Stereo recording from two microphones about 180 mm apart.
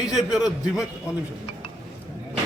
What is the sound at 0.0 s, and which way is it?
Speech, 5° right (ahead or behind).